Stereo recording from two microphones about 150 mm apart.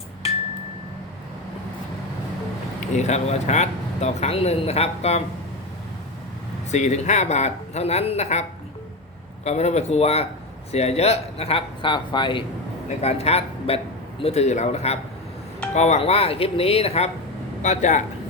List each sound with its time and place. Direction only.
2.9 s speech: 50° left (ahead or behind)
6.7 s speech: 50° left (ahead or behind); by 12.4 s 30° left (ahead or behind)
13.0 s speech: 45° left (ahead or behind)